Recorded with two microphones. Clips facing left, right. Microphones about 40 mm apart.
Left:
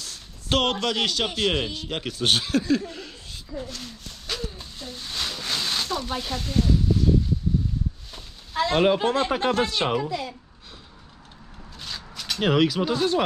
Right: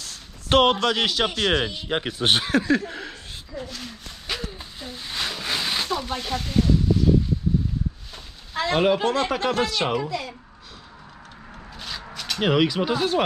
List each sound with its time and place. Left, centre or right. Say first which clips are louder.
0.5 s speech: right 5 dB; right
3.6 s speech: right 1 dB; centre
4.3 s a sound: right 1 dB; centre
8.5 s speech: left 1 dB; centre
9.0 s speech: even; centre
11.7 s shuffling cards: right 2 dB; centre
12.1 s a sound: even; centre
12.4 s speech: even; centre